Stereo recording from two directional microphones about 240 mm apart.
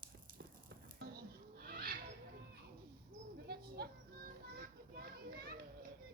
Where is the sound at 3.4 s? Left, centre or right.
Right.